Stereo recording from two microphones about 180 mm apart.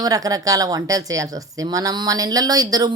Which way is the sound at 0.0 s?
20° right (ahead or behind).